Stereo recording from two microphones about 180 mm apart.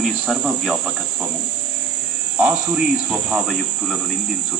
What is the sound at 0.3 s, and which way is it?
Speech, 5° right (ahead or behind).